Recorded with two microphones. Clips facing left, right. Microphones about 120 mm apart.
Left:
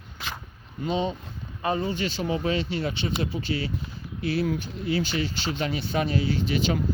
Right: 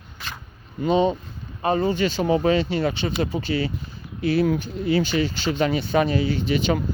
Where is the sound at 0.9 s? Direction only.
55° right (ahead or behind).